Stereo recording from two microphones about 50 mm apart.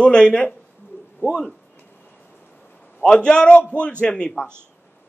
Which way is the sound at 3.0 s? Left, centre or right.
Centre.